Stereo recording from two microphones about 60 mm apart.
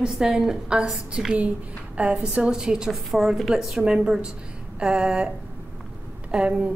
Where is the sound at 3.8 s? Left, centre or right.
Centre.